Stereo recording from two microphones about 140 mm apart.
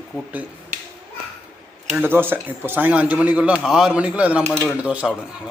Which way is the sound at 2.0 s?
15° right (ahead or behind).